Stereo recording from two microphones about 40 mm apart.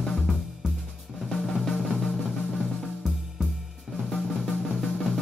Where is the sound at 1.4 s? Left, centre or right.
Centre.